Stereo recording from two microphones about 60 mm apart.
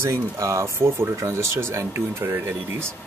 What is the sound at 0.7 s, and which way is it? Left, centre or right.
Speech, right.